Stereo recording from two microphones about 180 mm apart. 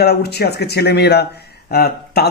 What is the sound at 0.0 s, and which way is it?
Speech, 65° left (ahead or behind).